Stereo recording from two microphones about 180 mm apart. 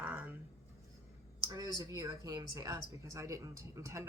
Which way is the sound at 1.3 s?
20° right (ahead or behind).